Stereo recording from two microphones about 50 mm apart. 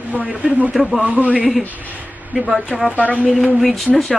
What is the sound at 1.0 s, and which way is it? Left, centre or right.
Speech, right.